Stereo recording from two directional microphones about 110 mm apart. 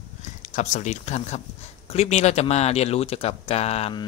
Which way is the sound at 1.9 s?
80° left.